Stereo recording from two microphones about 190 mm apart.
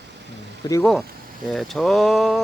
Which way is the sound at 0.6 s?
20° left (ahead or behind).